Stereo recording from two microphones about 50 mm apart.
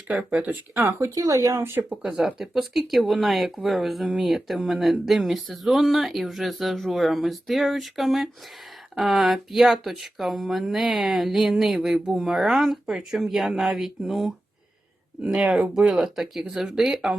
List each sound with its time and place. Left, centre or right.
0.1 s speech: right
0.9 s speech: right
2.4 s speech: centre
15.4 s speech: right
15.9 s speech: centre